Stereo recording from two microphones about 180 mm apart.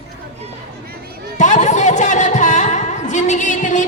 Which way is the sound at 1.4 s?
40° left (ahead or behind).